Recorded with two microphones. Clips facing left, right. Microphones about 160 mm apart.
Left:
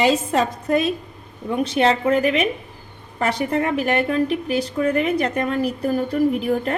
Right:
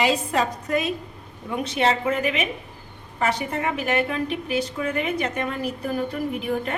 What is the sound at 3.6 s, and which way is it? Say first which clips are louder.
Speech: left 1 dB; 40° left (ahead or behind).